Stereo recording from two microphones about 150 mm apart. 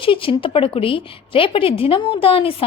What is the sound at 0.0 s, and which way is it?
A woman's voice, 35° left (ahead or behind).